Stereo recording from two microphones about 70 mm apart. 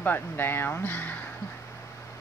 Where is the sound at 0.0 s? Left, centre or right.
Left.